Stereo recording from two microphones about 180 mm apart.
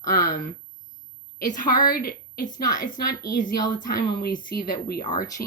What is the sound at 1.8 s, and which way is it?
Speech, 55° left (ahead or behind).